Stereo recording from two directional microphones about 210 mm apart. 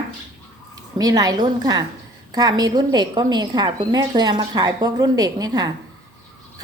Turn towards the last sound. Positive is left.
turn(degrees=-20)  # may be behind; listen again after turning